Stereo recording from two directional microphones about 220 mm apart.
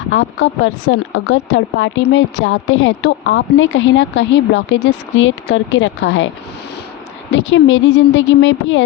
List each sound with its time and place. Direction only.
0.1 s a woman's voice: 60° left (ahead or behind)
7.3 s a woman's voice: 60° left (ahead or behind)